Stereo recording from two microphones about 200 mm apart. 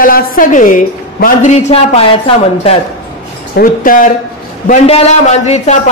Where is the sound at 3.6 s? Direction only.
45° left (ahead or behind).